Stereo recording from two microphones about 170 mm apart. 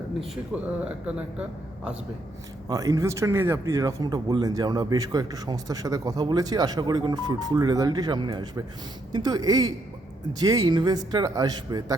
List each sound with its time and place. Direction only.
0.5 s speech: 5° right (ahead or behind)
2.6 s speech: 20° right (ahead or behind)